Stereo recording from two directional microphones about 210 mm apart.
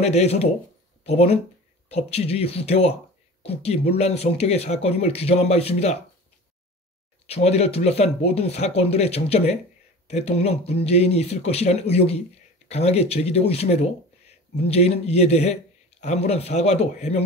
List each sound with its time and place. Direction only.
0.0 s speech: 30° left (ahead or behind)
7.2 s speech: 30° left (ahead or behind)